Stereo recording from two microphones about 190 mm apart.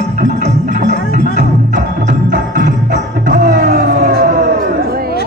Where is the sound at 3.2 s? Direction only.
45° right (ahead or behind).